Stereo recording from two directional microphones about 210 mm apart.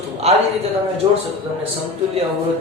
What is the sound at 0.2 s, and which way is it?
Speech, 30° right (ahead or behind).